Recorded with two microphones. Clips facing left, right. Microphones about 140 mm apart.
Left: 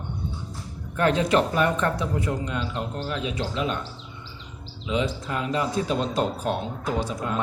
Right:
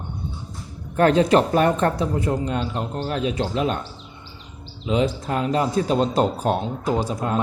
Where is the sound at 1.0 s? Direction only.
40° right (ahead or behind).